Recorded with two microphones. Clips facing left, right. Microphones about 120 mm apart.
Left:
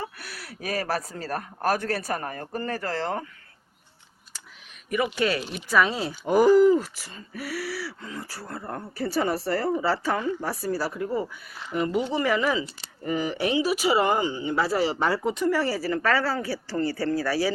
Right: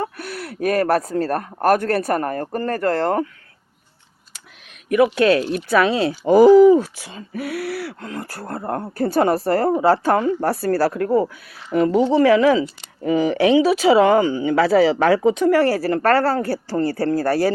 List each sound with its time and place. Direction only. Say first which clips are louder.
0.0 s speech: right 10 dB; 55° right (ahead or behind)
4.9 s speech: right 10 dB; 75° right (ahead or behind); by 17.5 s 50° right (ahead or behind)